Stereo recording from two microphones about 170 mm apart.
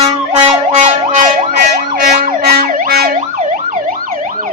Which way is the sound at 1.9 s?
65° right (ahead or behind).